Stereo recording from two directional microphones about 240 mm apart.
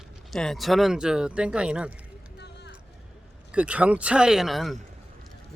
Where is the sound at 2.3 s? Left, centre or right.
Left.